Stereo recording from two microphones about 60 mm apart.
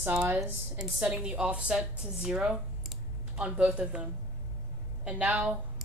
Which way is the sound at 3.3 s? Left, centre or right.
Centre.